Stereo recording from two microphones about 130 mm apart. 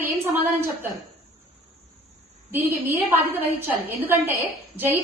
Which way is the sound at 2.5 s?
15° right (ahead or behind).